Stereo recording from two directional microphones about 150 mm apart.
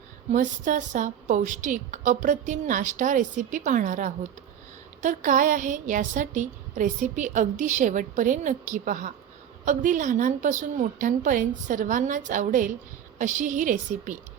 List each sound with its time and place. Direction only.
0.3 s a woman's voice: 55° right (ahead or behind)